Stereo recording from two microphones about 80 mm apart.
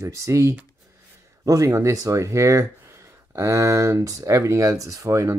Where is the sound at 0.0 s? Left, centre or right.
Right.